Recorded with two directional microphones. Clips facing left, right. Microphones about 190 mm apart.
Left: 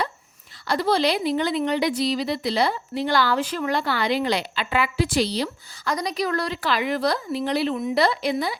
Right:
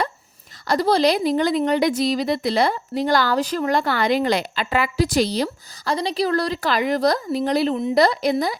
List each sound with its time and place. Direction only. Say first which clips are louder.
0.7 s a woman's voice: right 4 dB; 40° right (ahead or behind)
5.9 s a woman's voice: right 4 dB; 30° right (ahead or behind)